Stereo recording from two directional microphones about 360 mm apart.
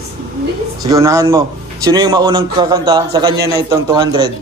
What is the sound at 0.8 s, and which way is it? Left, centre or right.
A man's voice, centre.